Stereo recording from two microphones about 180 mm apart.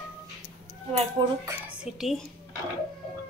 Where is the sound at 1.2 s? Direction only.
30° right (ahead or behind).